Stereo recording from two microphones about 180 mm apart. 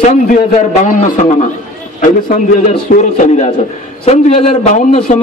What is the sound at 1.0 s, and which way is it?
A man's voice, 45° left (ahead or behind).